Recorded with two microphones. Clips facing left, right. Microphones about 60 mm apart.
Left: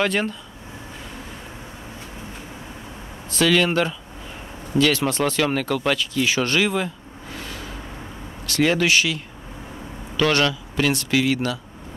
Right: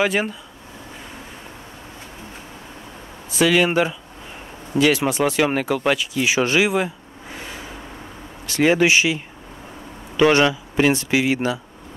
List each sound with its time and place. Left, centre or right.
0.0 s speech: centre
3.3 s speech: centre
7.3 s vehicle: centre
8.5 s speech: centre